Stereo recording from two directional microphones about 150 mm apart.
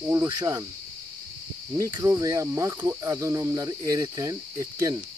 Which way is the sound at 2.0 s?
20° right (ahead or behind).